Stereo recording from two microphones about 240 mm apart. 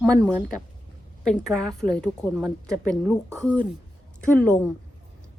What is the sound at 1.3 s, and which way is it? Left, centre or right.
A woman's voice, centre.